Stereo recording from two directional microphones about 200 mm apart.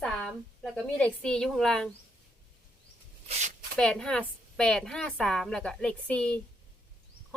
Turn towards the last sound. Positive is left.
turn(degrees=5)  # may be behind; listen again after turning